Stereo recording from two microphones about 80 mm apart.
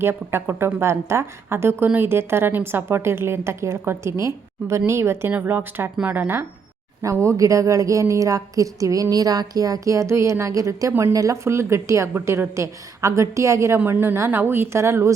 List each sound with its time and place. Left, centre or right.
0.0 s a woman's voice: right
5.3 s a woman's voice: right
7.0 s a woman's voice: right